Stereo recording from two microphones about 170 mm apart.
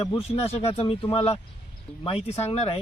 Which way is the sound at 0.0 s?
35° left (ahead or behind).